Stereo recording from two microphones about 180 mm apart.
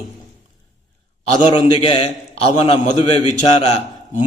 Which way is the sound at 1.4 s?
30° left (ahead or behind).